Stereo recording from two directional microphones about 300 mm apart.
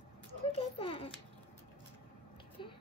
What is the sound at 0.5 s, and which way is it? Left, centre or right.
Speech, centre.